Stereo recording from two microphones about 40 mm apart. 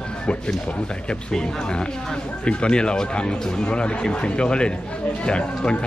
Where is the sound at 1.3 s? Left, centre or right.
Left.